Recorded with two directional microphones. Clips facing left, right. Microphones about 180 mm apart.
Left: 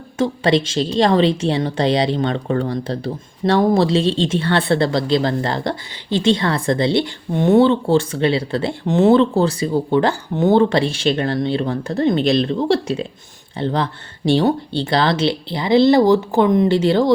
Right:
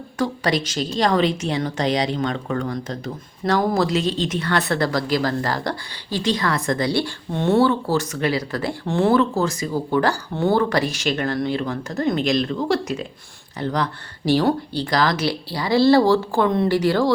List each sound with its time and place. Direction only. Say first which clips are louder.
0.2 s a woman's voice: left 5 dB; 25° left (ahead or behind)